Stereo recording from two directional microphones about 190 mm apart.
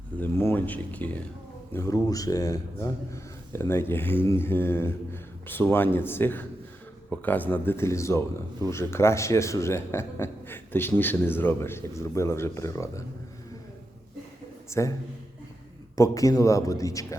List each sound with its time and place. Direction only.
0.2 s speech: 10° left (ahead or behind)
14.7 s a man's voice: 15° left (ahead or behind)
16.0 s speech: 15° left (ahead or behind)